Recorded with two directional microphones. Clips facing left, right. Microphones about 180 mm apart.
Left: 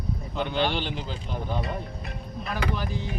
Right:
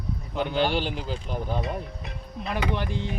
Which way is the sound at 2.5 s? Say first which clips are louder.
Right 2 dB; 25° right (ahead or behind).